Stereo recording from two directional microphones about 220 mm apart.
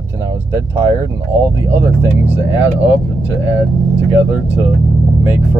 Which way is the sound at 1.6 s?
10° right (ahead or behind).